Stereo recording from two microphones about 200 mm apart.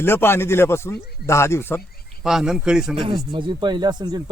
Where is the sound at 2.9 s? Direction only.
25° right (ahead or behind).